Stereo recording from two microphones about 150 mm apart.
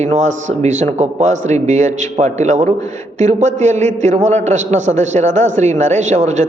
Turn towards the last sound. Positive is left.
turn(degrees=-50)  # may be behind; listen again after turning